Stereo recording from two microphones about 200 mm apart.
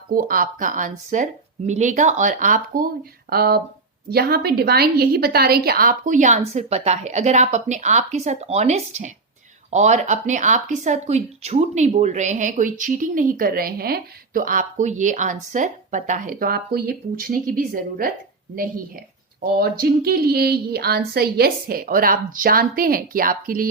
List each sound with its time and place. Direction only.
0.1 s speech: 45° right (ahead or behind)
19.4 s speech: 50° right (ahead or behind)